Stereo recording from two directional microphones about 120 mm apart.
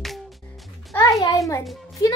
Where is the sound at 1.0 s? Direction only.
30° left (ahead or behind).